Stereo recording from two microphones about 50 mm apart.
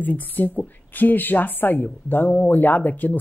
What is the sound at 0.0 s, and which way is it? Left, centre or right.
Speech, left.